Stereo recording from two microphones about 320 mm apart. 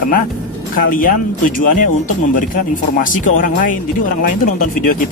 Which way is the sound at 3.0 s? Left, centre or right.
Left.